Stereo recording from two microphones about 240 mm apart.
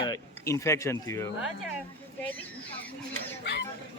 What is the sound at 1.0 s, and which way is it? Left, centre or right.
Speech, centre.